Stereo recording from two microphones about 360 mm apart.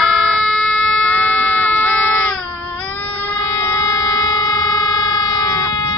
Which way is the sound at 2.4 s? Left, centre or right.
Centre.